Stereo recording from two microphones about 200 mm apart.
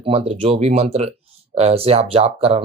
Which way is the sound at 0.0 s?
30° right (ahead or behind).